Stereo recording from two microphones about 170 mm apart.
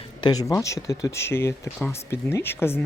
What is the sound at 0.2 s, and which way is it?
Speech, 20° left (ahead or behind).